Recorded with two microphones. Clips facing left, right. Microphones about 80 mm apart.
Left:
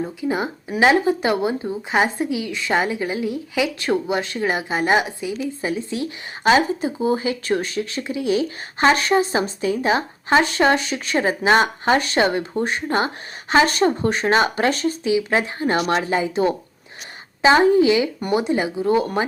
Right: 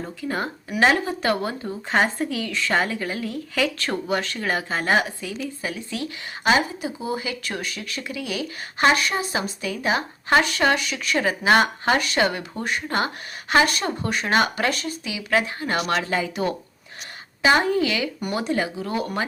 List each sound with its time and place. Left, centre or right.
0.2 s speech: centre; by 19.2 s left